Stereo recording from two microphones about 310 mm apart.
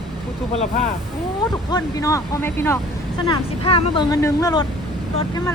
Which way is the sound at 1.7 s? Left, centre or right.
Centre.